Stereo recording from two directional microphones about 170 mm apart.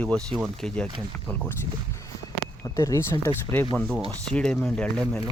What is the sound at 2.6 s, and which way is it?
Speech, 20° left (ahead or behind).